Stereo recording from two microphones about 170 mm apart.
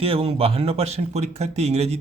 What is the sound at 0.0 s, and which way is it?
A man's voice, 35° right (ahead or behind).